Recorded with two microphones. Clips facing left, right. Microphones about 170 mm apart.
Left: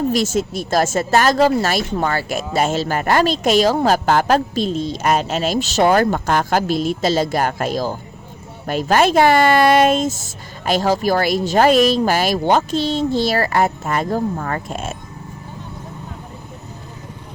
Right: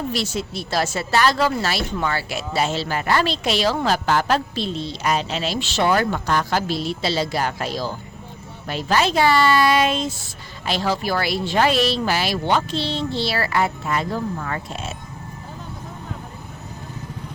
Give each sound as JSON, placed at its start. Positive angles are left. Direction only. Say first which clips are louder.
{"t": 0.1, "sound": "speech", "louder": "left 7 dB", "side_deg": 45}